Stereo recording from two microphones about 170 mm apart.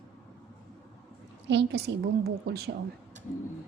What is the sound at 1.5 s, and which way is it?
A woman's voice, 85° right.